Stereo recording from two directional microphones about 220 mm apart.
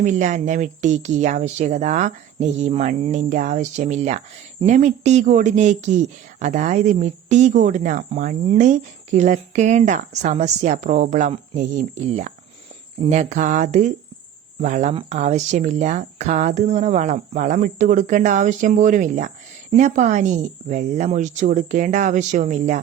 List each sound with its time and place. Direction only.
0.0 s speech: 35° right (ahead or behind)